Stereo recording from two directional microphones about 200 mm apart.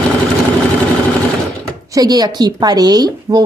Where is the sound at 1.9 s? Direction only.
20° right (ahead or behind).